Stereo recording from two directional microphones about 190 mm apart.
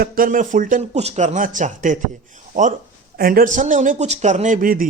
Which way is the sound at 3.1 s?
50° right (ahead or behind).